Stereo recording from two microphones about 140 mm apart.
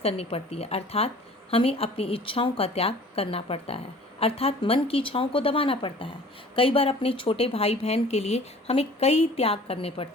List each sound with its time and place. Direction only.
0.0 s a woman's voice: 45° left (ahead or behind)